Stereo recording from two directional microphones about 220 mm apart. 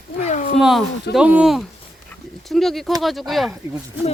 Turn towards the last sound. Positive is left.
turn(degrees=0)  # may be behind; listen again after turning